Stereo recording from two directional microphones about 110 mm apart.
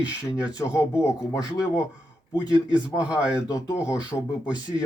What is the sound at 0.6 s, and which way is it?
Speech, 30° left (ahead or behind).